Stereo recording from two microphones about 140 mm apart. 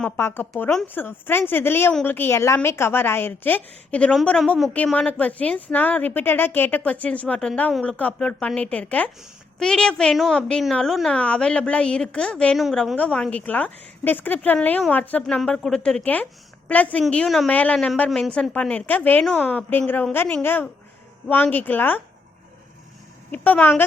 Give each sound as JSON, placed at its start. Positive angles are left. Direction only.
{"t": 0.2, "sound": "a woman's voice", "side_deg": 15}
{"t": 23.3, "sound": "a woman's voice", "side_deg": 10}